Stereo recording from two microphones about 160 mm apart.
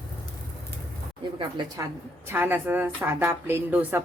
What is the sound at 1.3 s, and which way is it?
Speech, 25° right (ahead or behind).